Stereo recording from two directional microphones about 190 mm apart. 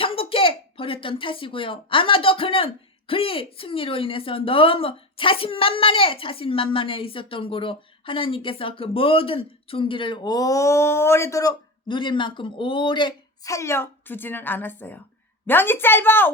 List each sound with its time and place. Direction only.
0.0 s a woman's voice: 30° left (ahead or behind); by 16.3 s 10° left (ahead or behind)